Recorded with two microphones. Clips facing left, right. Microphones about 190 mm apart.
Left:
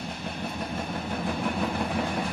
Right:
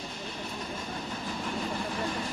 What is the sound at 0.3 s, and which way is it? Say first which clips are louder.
Vehicle: left 5 dB; 60° left (ahead or behind).